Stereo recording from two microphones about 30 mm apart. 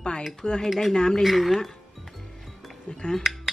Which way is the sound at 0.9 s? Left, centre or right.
Left.